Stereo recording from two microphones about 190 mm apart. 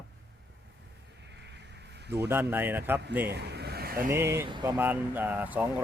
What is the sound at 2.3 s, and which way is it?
Speech, 10° right (ahead or behind).